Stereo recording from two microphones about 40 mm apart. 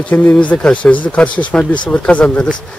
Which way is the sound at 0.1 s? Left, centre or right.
Left.